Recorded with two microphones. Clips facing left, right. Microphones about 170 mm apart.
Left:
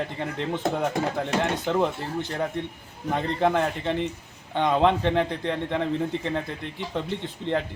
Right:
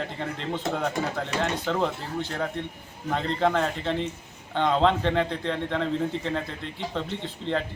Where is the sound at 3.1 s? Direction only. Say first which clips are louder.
Left 1 dB; 15° left (ahead or behind).